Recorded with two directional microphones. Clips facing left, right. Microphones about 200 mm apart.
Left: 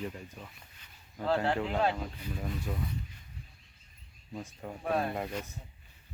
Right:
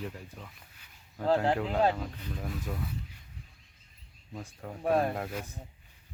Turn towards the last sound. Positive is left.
turn(degrees=0)  # may be behind; listen again after turning